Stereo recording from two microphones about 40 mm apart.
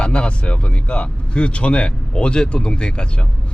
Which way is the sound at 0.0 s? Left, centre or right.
Left.